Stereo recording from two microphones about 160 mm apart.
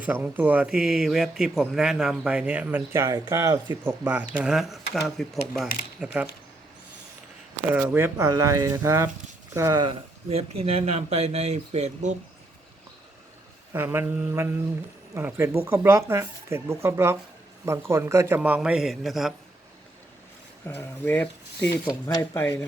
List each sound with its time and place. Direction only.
0.0 s speech: 10° right (ahead or behind)
3.8 s speech: 10° right (ahead or behind)
7.7 s speech: 10° right (ahead or behind)
10.2 s speech: 40° right (ahead or behind)
13.7 s speech: 15° right (ahead or behind)
20.7 s speech: 15° left (ahead or behind)